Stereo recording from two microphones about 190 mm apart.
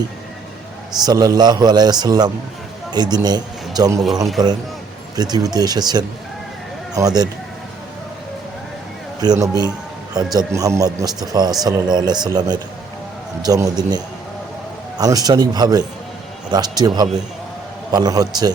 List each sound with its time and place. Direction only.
1.0 s a man's voice: 20° right (ahead or behind)
5.1 s a man's voice: 20° right (ahead or behind)
9.2 s a man's voice: 20° right (ahead or behind)